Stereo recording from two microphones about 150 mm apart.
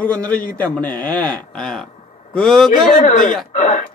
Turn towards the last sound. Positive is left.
turn(degrees=55)  # may be behind; listen again after turning